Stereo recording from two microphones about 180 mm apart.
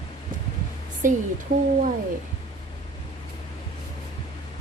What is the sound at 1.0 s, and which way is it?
Speech, 45° right (ahead or behind).